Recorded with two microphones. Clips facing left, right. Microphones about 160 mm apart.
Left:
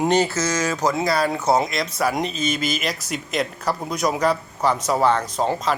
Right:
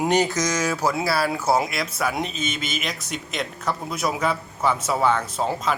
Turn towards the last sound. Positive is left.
turn(degrees=-5)  # may be behind; listen again after turning